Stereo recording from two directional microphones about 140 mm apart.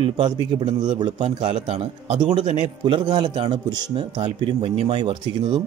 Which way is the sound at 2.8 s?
35° right (ahead or behind).